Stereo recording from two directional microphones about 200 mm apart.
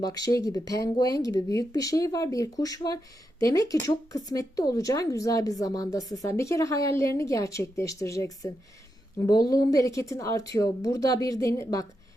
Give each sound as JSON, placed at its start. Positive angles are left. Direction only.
{"t": 0.0, "sound": "speech", "side_deg": 20}